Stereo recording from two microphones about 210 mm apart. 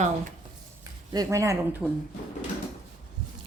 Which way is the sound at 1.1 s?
15° right (ahead or behind).